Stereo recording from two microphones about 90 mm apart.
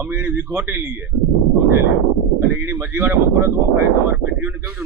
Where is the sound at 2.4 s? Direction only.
25° right (ahead or behind).